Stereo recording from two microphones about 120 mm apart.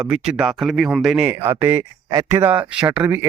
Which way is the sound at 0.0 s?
5° right (ahead or behind).